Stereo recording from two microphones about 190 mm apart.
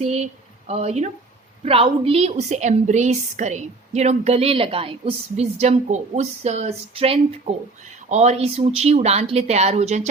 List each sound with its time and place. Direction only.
0.0 s a woman's voice: 35° right (ahead or behind)